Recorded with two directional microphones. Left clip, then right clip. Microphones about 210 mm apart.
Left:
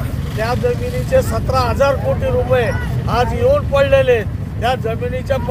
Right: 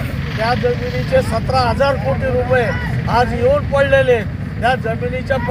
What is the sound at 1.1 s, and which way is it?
Speech, 15° left (ahead or behind).